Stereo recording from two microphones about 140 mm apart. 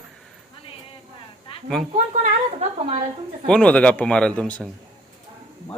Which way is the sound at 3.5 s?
10° left (ahead or behind).